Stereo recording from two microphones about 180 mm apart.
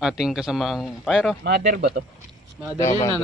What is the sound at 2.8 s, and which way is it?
Speech, 15° left (ahead or behind).